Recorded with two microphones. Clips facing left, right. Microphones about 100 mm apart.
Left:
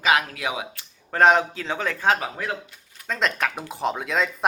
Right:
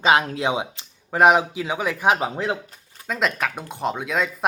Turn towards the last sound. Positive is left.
turn(degrees=0)  # may be behind; listen again after turning